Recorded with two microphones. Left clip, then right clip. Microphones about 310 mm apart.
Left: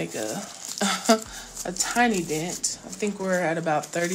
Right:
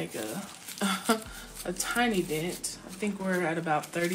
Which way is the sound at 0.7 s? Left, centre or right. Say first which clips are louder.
Left 7 dB; left.